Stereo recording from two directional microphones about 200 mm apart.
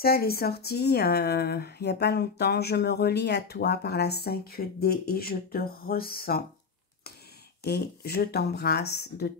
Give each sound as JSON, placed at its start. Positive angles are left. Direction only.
{"t": 0.0, "sound": "speech", "side_deg": 50}
{"t": 7.6, "sound": "speech", "side_deg": 50}